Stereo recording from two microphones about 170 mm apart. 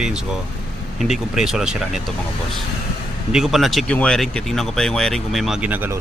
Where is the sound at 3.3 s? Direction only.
Centre (ahead or behind).